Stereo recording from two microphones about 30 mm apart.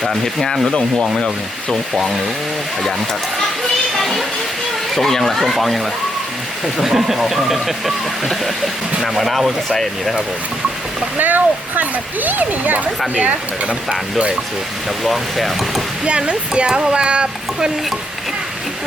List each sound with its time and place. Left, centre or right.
0.0 s speech: centre
0.4 s rub: centre
4.9 s speech: centre
6.7 s speech: centre
11.2 s speech: right
13.1 s speech: right
15.0 s speech: centre
16.0 s speech: right